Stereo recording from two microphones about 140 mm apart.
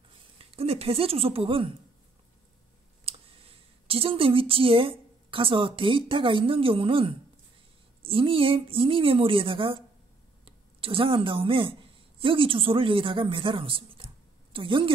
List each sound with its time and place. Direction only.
0.4 s speech: 45° right (ahead or behind)
3.1 s a woman's voice: 45° right (ahead or behind)